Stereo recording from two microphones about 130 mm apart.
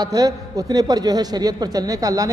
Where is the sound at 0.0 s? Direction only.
30° right (ahead or behind).